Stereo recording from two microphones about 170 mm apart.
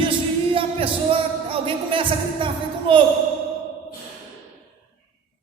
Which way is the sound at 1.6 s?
30° right (ahead or behind).